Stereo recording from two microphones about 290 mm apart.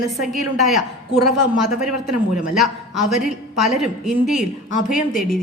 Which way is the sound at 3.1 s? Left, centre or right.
Centre.